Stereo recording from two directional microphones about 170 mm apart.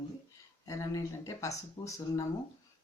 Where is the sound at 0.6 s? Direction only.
20° left (ahead or behind).